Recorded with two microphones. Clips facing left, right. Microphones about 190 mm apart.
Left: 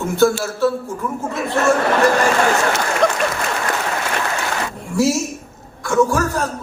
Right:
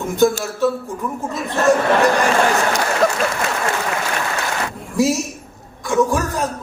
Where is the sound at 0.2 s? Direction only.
15° right (ahead or behind).